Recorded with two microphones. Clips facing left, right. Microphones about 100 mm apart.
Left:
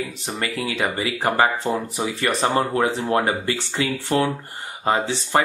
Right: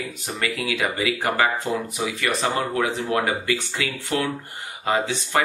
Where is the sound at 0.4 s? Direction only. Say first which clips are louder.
Even; 30° left (ahead or behind).